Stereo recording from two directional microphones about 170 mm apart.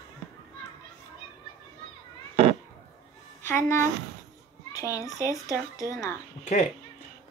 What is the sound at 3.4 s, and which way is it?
A woman's voice, 15° left (ahead or behind).